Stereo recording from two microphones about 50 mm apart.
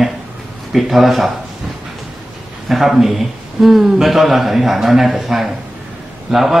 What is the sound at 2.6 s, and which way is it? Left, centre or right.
Speech, centre.